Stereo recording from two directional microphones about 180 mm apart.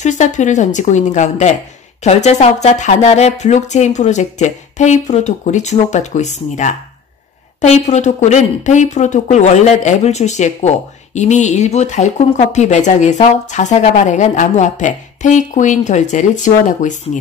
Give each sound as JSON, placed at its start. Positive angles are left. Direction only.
{"t": 0.0, "sound": "speech", "side_deg": 40}